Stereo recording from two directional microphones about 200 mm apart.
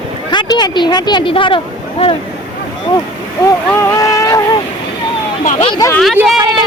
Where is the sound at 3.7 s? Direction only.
15° left (ahead or behind).